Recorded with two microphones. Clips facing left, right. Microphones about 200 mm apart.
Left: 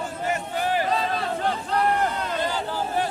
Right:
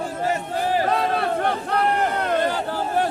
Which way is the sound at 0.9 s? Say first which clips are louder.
Right 4 dB; 65° right (ahead or behind).